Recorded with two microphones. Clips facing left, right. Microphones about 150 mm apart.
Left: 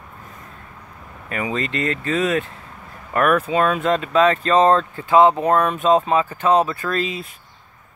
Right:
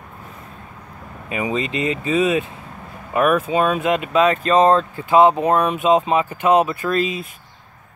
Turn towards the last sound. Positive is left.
turn(degrees=30)  # may be behind; listen again after turning